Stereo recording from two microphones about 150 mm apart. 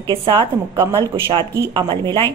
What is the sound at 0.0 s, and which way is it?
A woman's voice, 35° right (ahead or behind).